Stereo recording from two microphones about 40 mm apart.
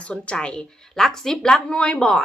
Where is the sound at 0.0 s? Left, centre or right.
Left.